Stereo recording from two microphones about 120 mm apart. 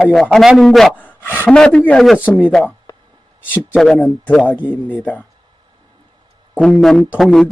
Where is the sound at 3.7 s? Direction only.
Centre (ahead or behind).